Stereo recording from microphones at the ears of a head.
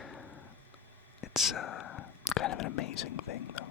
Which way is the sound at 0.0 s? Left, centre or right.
Left.